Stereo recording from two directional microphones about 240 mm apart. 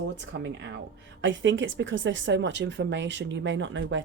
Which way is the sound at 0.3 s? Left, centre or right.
Right.